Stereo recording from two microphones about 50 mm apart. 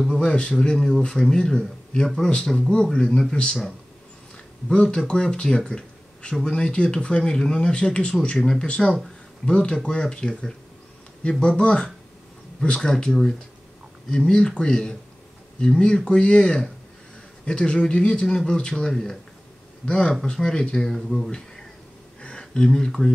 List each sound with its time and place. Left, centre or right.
0.1 s speech: centre
4.6 s speech: centre
19.9 s speech: centre
22.2 s a sound: centre